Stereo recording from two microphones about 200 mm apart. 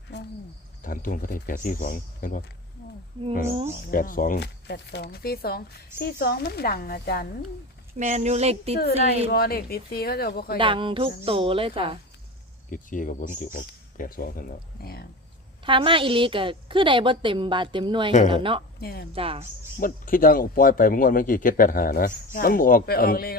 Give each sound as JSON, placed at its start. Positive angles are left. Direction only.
{"t": 0.1, "sound": "cricket", "side_deg": 60}
{"t": 0.8, "sound": "speech", "side_deg": 45}
{"t": 3.9, "sound": "speech", "side_deg": 45}
{"t": 7.9, "sound": "speech", "side_deg": -35}
{"t": 9.3, "sound": "speech", "side_deg": 50}
{"t": 10.6, "sound": "a woman's voice", "side_deg": -25}
{"t": 12.7, "sound": "speech", "side_deg": 40}
{"t": 15.6, "sound": "a woman's voice", "side_deg": -25}
{"t": 18.8, "sound": "speech", "side_deg": 50}
{"t": 19.1, "sound": "a woman's voice", "side_deg": -30}
{"t": 19.8, "sound": "speech", "side_deg": 45}